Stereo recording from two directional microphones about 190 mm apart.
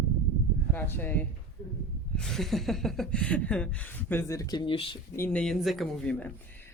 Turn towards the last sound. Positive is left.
turn(degrees=5)  # may be behind; listen again after turning